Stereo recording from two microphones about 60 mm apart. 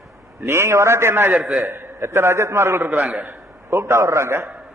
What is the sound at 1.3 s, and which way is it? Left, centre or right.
Speech, centre.